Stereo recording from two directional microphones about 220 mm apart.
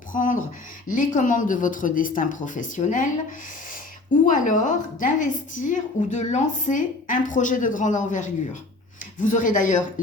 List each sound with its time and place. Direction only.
0.1 s a sound: 35° left (ahead or behind)
0.9 s a woman's voice: 35° left (ahead or behind)
4.3 s a woman's voice: 35° left (ahead or behind)